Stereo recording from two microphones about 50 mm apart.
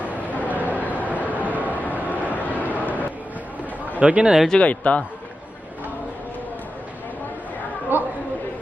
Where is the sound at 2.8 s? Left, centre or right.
Left.